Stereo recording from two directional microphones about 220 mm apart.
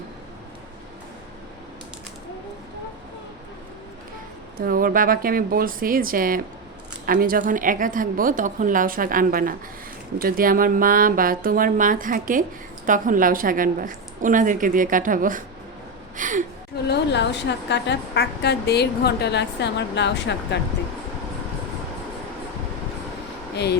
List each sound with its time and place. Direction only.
4.5 s speech: 40° right (ahead or behind)
16.1 s a sound: 35° right (ahead or behind)
16.9 s a woman's voice: 50° left (ahead or behind)